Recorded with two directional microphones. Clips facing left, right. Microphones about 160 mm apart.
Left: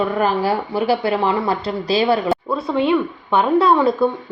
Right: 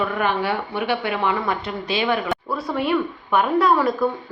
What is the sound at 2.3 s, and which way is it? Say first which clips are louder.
A woman's voice: left 5 dB; 25° left (ahead or behind).